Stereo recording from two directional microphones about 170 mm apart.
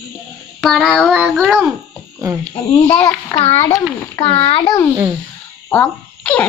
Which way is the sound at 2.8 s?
25° left (ahead or behind).